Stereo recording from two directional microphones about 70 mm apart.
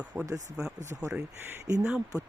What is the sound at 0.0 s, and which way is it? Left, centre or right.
Speech, right.